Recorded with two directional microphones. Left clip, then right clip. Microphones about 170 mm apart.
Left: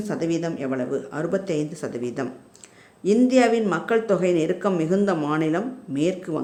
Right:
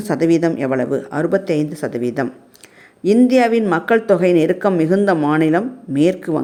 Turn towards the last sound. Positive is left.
turn(degrees=-35)  # may be behind; listen again after turning